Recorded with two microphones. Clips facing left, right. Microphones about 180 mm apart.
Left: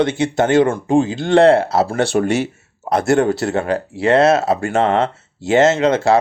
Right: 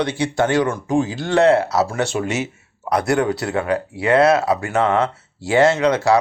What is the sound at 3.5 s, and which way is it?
Speech, 25° left (ahead or behind).